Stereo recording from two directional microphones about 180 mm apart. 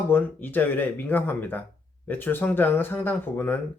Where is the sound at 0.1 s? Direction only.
10° left (ahead or behind).